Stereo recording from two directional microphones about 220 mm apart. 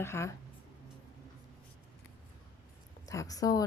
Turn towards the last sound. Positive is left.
turn(degrees=15)  # may be behind; listen again after turning